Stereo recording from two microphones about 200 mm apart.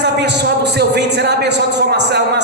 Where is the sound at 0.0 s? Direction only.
55° right (ahead or behind).